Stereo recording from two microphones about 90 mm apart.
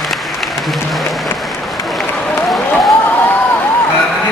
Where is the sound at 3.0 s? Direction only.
20° left (ahead or behind).